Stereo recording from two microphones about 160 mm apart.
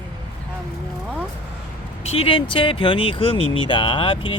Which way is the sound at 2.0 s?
40° left (ahead or behind).